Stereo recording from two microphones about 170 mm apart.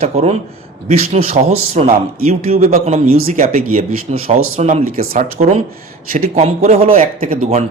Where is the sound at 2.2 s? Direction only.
55° right (ahead or behind).